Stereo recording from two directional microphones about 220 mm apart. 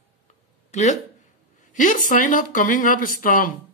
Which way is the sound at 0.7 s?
35° left (ahead or behind).